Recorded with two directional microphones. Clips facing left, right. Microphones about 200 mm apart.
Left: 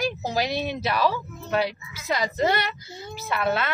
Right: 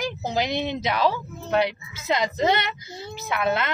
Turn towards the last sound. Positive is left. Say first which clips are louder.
# right 1 dB
turn(degrees=-20)  # may be behind; listen again after turning